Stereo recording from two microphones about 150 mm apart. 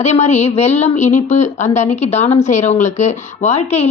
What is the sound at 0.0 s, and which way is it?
A woman's voice, 50° left (ahead or behind).